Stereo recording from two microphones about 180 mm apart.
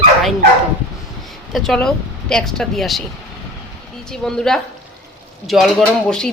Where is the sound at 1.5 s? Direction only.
Centre (ahead or behind).